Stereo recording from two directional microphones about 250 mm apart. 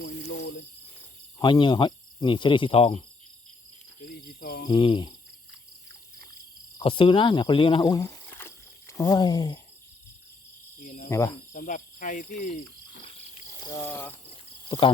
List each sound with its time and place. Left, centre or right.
1.4 s cricket: centre
4.1 s cricket: left
4.7 s cricket: centre
6.7 s speech: left
10.8 s cricket: left
11.1 s speech: centre
11.5 s cricket: left
13.1 s cricket: centre
14.3 s cricket: left